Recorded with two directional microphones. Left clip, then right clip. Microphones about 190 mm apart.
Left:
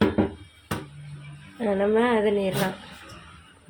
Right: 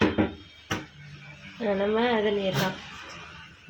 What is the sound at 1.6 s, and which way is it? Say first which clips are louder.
Speech: left 3 dB; 10° left (ahead or behind).